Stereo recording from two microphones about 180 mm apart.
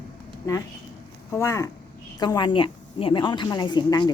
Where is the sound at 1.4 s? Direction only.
15° left (ahead or behind).